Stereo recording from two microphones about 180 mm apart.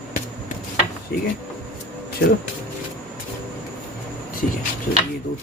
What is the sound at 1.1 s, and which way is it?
Speech, 60° left (ahead or behind).